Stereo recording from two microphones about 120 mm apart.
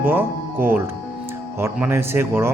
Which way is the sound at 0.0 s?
15° right (ahead or behind).